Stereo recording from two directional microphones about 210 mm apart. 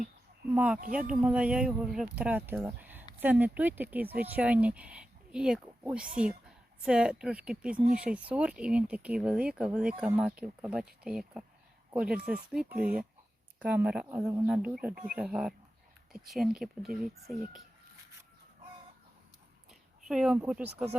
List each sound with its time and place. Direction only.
0.5 s speech: 5° right (ahead or behind)
0.8 s speech: 40° right (ahead or behind)
1.2 s speech: 5° right (ahead or behind)
20.1 s speech: 5° right (ahead or behind)